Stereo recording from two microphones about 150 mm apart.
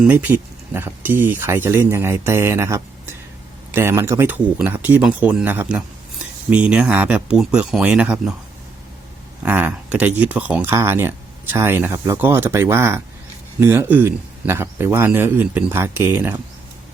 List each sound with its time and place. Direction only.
0.0 s speech: 10° right (ahead or behind)
9.4 s speech: 10° right (ahead or behind)